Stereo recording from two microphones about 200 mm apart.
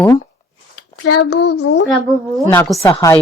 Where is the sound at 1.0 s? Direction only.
60° left (ahead or behind).